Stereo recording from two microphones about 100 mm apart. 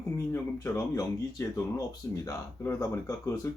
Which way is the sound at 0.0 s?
25° left (ahead or behind).